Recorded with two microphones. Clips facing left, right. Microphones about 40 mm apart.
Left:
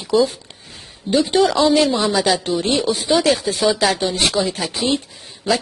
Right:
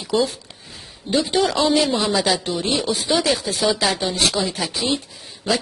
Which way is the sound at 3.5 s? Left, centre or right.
Centre.